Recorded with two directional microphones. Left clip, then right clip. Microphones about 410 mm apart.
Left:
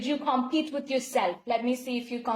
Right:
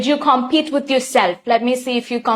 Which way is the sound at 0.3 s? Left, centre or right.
Right.